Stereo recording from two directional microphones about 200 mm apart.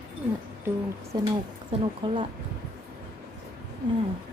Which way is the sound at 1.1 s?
20° right (ahead or behind).